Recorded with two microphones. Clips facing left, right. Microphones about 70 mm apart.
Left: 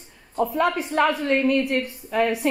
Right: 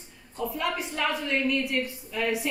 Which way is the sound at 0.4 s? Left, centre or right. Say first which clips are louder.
Left 8 dB; left.